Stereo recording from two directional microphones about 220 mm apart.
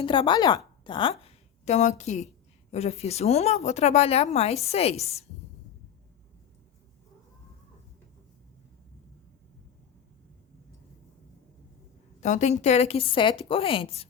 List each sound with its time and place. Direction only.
0.0 s a woman's voice: 20° left (ahead or behind)
12.2 s speech: 30° left (ahead or behind)